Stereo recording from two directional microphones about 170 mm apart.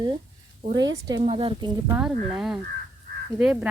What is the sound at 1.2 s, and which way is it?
Speech, 35° right (ahead or behind).